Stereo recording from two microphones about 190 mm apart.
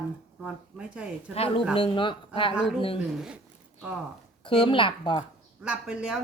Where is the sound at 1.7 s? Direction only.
25° left (ahead or behind).